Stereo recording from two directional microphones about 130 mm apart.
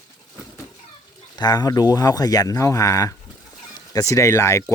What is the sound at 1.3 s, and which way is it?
Speech, 30° left (ahead or behind).